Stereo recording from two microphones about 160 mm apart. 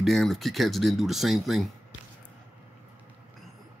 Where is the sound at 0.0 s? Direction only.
Centre (ahead or behind).